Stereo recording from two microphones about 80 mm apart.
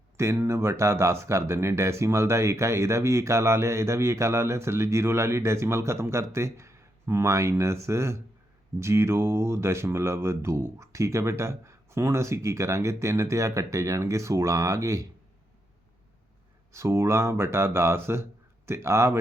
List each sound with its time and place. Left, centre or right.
0.2 s speech: right
16.7 s speech: right